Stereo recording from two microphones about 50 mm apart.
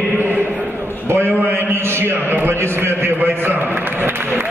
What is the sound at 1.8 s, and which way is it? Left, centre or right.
A man's voice, right.